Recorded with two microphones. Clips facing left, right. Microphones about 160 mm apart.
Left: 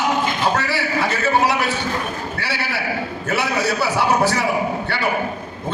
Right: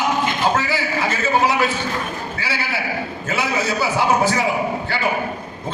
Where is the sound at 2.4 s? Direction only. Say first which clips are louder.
Right 1 dB; 65° left (ahead or behind).